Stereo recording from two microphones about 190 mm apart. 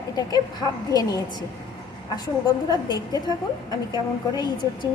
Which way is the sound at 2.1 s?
20° left (ahead or behind).